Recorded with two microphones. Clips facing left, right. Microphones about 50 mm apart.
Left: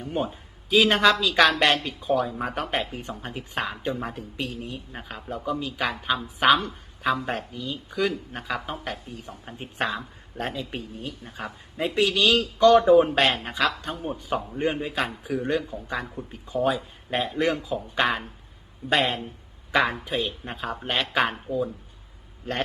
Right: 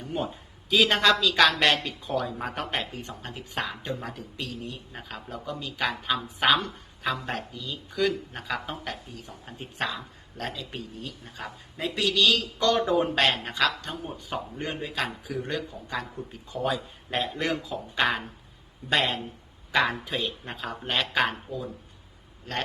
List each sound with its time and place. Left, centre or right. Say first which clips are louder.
0.7 s speech: left 2 dB; centre
7.5 s speech: left 4 dB; left
7.9 s speech: even; centre
9.6 s speech: left 3 dB; left; by 12.8 s centre
12.8 s speech: left 7 dB; centre
13.1 s speech: left 2 dB; centre
22.5 s speech: left 2 dB; left